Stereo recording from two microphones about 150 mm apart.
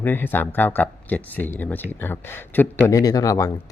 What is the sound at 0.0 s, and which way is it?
A man's voice, 15° left (ahead or behind).